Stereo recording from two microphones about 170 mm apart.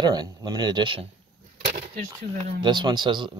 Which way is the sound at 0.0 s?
25° right (ahead or behind).